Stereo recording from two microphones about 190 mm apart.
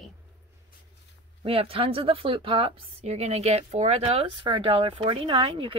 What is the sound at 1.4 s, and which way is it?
A woman's voice, 30° right (ahead or behind).